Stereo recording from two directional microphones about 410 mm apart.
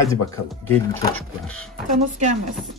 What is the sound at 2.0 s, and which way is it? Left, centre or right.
Speech, centre.